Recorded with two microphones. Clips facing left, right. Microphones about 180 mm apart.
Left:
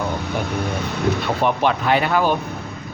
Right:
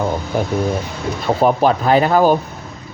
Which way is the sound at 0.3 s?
40° right (ahead or behind).